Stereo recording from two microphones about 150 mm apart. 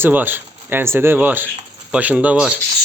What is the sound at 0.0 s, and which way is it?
Speech, 10° right (ahead or behind).